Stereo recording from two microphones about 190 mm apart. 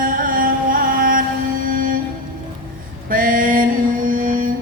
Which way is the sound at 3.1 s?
45° right (ahead or behind).